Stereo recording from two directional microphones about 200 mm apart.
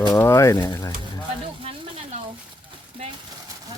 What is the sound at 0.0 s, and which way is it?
Speech, 15° left (ahead or behind).